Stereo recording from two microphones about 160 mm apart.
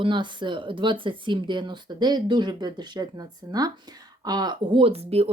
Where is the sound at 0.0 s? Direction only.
30° right (ahead or behind).